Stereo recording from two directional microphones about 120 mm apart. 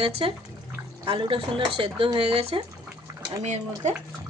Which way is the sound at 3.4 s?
75° right (ahead or behind).